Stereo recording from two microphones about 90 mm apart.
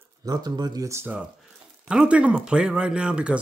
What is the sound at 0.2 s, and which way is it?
Speech, 50° right (ahead or behind).